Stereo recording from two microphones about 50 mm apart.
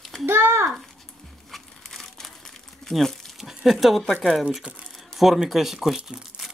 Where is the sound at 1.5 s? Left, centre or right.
Centre.